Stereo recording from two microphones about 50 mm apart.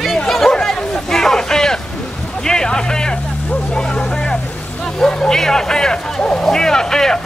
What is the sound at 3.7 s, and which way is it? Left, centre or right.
Vehicle, centre.